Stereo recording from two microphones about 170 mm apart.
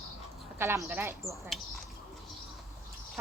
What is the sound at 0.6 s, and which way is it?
Speech, 15° right (ahead or behind).